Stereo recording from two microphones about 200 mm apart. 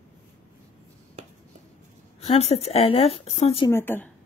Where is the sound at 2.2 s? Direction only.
30° left (ahead or behind).